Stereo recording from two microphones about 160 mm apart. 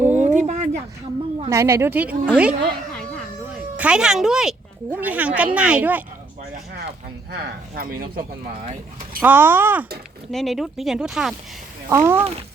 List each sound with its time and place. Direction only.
0.0 s a sound: 50° right (ahead or behind)
1.5 s speech: 15° right (ahead or behind)
3.8 s speech: 5° right (ahead or behind)
7.8 s speech: 70° right (ahead or behind)
9.2 s speech: 10° right (ahead or behind)
10.3 s speech: centre (ahead or behind)
11.9 s speech: 15° right (ahead or behind)